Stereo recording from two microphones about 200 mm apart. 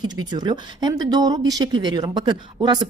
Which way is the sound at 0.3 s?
20° right (ahead or behind).